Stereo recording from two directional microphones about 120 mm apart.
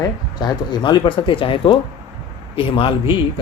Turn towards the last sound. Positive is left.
turn(degrees=45)  # may be behind; listen again after turning